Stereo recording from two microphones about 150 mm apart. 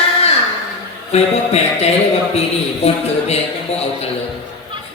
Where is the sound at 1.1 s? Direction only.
45° left (ahead or behind).